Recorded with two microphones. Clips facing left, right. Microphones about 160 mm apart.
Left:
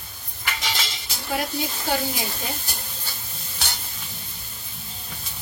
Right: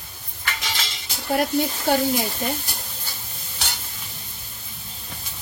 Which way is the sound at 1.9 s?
60° right (ahead or behind).